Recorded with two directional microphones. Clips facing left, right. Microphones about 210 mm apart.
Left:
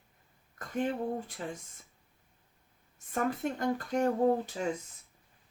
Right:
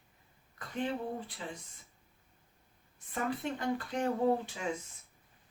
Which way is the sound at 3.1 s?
45° left (ahead or behind).